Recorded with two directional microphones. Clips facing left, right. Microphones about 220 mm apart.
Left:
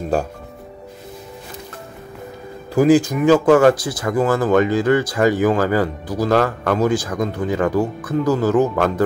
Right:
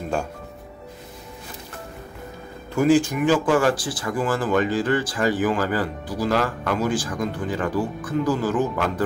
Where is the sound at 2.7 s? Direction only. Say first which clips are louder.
Left 4 dB; 35° left (ahead or behind).